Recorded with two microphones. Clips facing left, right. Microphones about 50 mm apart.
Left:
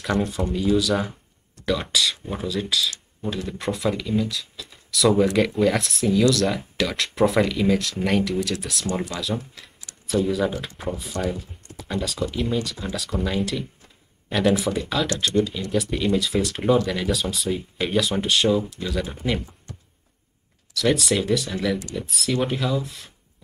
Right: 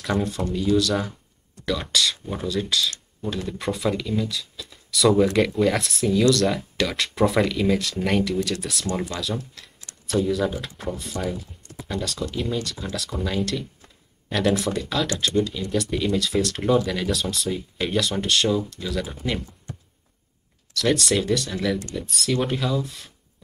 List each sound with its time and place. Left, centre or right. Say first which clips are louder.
0.2 s speech: left 1 dB; centre
15.3 s speech: left 1 dB; right
15.7 s speech: left 1 dB; centre
20.7 s speech: even; centre